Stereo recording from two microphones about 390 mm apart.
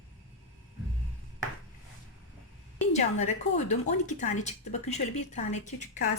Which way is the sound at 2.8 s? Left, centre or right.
Centre.